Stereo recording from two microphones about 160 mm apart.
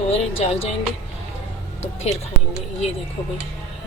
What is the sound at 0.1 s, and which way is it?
Speech, 40° left (ahead or behind).